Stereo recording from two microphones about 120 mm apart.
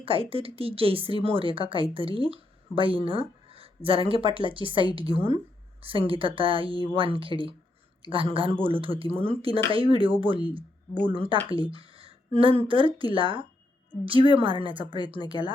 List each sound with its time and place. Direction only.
0.0 s speech: 50° right (ahead or behind)
11.4 s a sound: 45° right (ahead or behind)
12.6 s speech: 45° right (ahead or behind)